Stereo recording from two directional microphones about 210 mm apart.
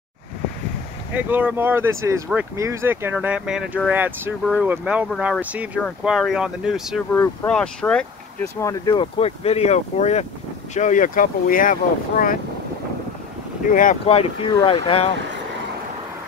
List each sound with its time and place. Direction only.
1.1 s speech: 10° right (ahead or behind); by 12.4 s 40° left (ahead or behind)
13.7 s speech: 40° left (ahead or behind)